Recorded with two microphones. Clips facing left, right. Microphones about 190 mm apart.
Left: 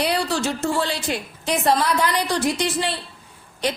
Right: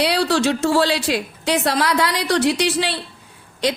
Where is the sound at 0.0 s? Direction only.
75° right (ahead or behind).